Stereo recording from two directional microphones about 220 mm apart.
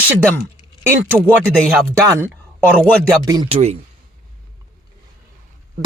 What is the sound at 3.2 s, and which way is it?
Speech, 20° right (ahead or behind).